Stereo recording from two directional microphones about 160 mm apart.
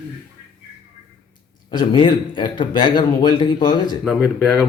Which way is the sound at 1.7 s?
30° left (ahead or behind).